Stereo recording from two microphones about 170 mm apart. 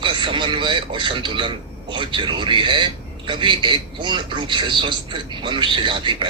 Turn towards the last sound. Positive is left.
turn(degrees=-30)  # may be behind; listen again after turning